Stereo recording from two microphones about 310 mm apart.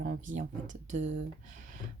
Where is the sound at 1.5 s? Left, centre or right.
Right.